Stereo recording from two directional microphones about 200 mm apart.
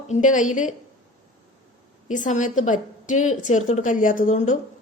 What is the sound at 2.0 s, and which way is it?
A woman's voice, 40° left (ahead or behind).